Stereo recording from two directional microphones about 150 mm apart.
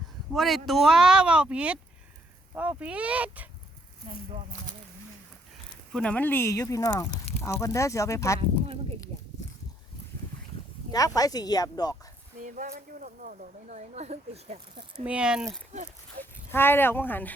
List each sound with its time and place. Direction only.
0.3 s speech: centre (ahead or behind)
5.9 s speech: 5° left (ahead or behind)
8.4 s speech: 40° right (ahead or behind)
10.9 s speech: 25° left (ahead or behind)
12.4 s speech: 60° right (ahead or behind)
15.0 s speech: 5° right (ahead or behind)
15.7 s speech: 60° right (ahead or behind)
16.5 s speech: 15° left (ahead or behind)